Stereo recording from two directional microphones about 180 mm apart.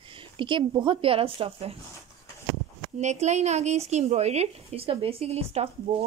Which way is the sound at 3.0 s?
40° right (ahead or behind).